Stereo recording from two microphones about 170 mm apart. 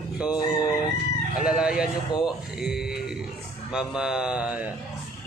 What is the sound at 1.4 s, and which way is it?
Speech, 5° right (ahead or behind).